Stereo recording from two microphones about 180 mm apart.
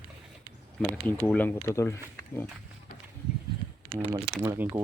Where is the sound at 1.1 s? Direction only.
10° left (ahead or behind).